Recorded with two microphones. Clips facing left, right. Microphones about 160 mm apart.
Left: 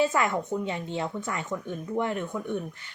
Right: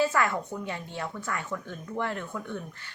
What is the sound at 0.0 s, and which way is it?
A woman's voice, 20° left (ahead or behind).